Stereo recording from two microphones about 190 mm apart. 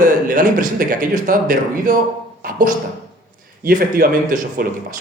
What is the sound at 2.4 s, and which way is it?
Music, 45° right (ahead or behind).